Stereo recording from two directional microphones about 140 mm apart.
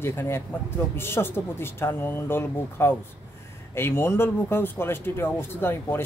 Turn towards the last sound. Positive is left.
turn(degrees=15)  # may be behind; listen again after turning